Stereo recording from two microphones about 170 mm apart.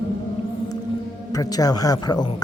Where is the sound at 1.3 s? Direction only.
20° left (ahead or behind).